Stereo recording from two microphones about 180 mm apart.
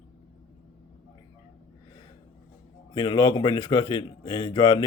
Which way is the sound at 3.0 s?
25° left (ahead or behind).